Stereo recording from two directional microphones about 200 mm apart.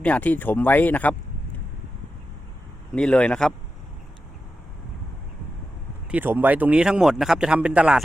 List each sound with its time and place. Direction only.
0.0 s speech: 5° left (ahead or behind)
2.9 s a man's voice: 5° left (ahead or behind)
6.1 s a man's voice: 10° right (ahead or behind)